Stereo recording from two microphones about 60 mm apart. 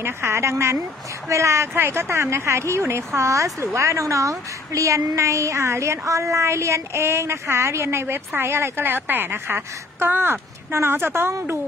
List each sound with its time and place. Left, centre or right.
0.0 s a woman's voice: right